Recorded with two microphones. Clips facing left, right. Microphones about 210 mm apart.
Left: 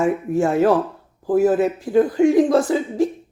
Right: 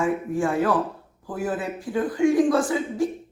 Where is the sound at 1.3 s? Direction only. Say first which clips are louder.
Left 11 dB; 40° left (ahead or behind).